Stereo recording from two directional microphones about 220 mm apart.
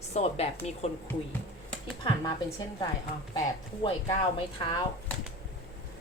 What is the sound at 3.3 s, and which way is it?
Speech, 20° left (ahead or behind).